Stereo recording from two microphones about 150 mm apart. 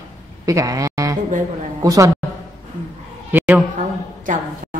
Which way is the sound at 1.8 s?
20° right (ahead or behind).